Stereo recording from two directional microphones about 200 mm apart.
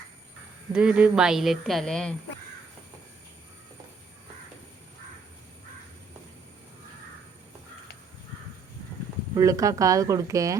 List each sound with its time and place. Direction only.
0.7 s speech: 5° right (ahead or behind)
9.3 s speech: 15° right (ahead or behind)